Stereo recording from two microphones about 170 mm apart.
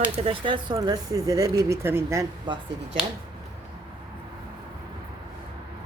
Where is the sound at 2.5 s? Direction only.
25° right (ahead or behind).